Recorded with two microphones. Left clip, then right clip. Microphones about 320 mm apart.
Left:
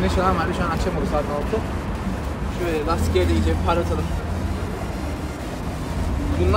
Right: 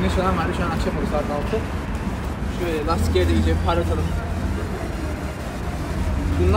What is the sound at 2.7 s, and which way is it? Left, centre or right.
Speech, centre.